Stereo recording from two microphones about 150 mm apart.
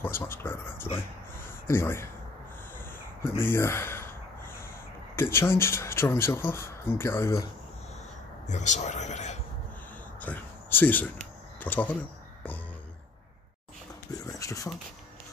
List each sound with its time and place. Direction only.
0.0 s speech: 15° left (ahead or behind)
1.4 s a sound: 15° left (ahead or behind)
3.3 s speech: 15° left (ahead or behind)
5.1 s speech: 15° left (ahead or behind)
8.5 s speech: 50° left (ahead or behind)
10.2 s speech: 10° left (ahead or behind)
14.2 s speech: 20° left (ahead or behind)